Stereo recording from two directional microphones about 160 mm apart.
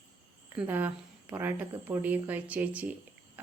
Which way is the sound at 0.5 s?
10° right (ahead or behind).